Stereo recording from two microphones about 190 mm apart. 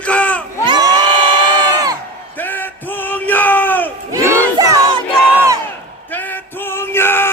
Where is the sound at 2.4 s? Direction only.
10° left (ahead or behind).